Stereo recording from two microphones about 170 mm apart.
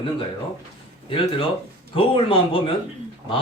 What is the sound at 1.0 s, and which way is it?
Speech, 30° left (ahead or behind).